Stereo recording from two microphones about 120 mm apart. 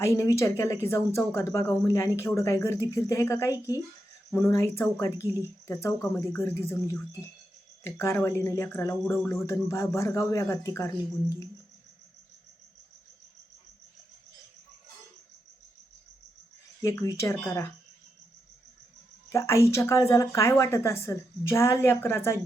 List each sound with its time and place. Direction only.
0.0 s speech: 25° left (ahead or behind)
16.8 s speech: 25° left (ahead or behind)
19.3 s speech: 25° left (ahead or behind)